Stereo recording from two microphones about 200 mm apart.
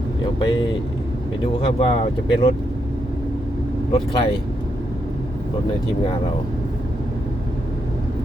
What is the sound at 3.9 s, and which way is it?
Speech, 30° left (ahead or behind).